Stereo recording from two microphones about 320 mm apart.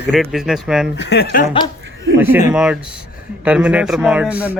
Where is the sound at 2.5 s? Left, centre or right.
Centre.